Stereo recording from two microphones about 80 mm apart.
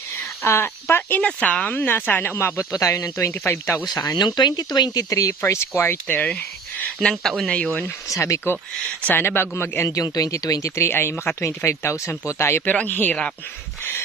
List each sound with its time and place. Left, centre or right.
0.4 s speech: left
1.2 s speech: centre
2.3 s speech: left
3.8 s speech: left
5.0 s speech: left
5.4 s speech: left
7.0 s speech: centre
8.2 s speech: left
9.0 s speech: left
10.0 s speech: left
10.8 s speech: left
12.7 s speech: centre